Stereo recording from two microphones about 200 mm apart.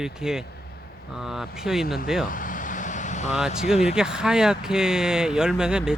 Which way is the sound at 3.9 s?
5° right (ahead or behind).